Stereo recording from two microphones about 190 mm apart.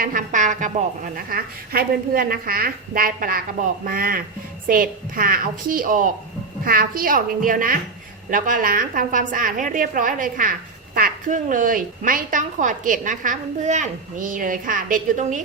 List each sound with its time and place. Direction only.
0.0 s a woman's voice: 45° right (ahead or behind)